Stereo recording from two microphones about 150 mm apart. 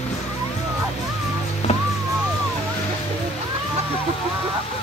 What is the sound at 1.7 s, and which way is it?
Music, 40° left (ahead or behind).